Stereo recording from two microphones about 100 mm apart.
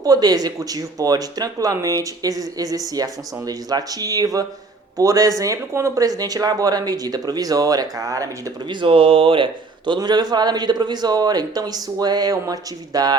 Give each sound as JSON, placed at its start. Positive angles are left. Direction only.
{"t": 0.0, "sound": "speech", "side_deg": -40}
{"t": 8.7, "sound": "speech", "side_deg": -60}